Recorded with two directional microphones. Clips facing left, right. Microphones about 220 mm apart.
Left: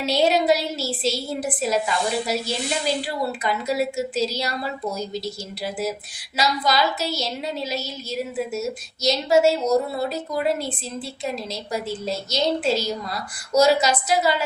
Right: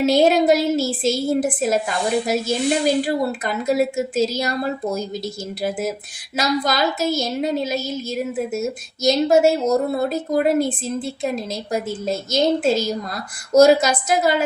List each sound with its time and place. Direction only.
0.0 s a woman's voice: 50° right (ahead or behind)
6.3 s a woman's voice: 50° right (ahead or behind)